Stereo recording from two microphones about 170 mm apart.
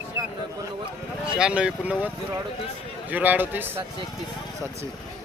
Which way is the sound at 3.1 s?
10° right (ahead or behind).